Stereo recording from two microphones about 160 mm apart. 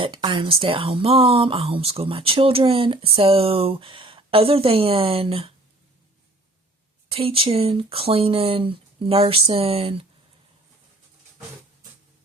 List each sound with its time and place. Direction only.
0.0 s speech: 30° right (ahead or behind)
7.1 s speech: 35° right (ahead or behind)